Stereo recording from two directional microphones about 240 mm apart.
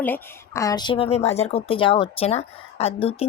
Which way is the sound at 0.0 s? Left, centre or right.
Centre.